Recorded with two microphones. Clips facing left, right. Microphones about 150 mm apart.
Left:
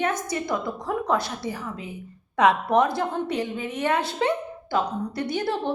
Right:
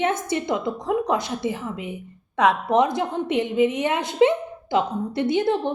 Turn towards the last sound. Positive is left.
turn(degrees=-20)  # may be behind; listen again after turning